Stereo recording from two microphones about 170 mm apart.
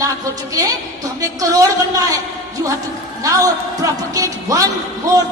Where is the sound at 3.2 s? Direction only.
20° right (ahead or behind).